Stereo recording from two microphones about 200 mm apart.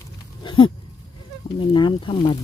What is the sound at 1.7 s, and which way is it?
Speech, 25° left (ahead or behind).